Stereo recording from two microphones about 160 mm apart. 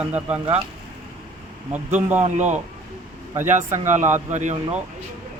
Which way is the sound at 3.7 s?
50° right (ahead or behind).